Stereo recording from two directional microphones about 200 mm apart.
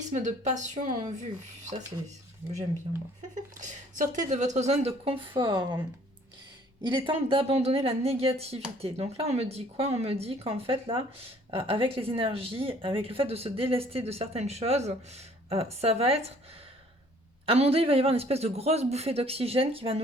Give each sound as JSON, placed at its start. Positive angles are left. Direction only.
{"t": 0.1, "sound": "speech", "side_deg": -35}
{"t": 3.3, "sound": "speech", "side_deg": -40}
{"t": 6.8, "sound": "speech", "side_deg": -25}
{"t": 17.4, "sound": "speech", "side_deg": -30}